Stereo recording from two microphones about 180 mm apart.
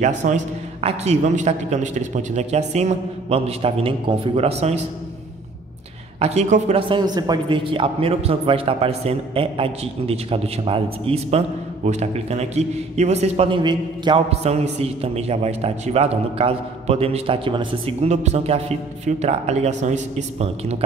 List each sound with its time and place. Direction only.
0.0 s a man's voice: 40° right (ahead or behind)
6.1 s a man's voice: 35° right (ahead or behind)